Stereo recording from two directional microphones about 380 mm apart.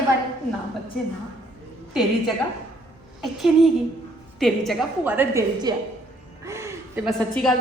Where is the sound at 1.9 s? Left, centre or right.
Centre.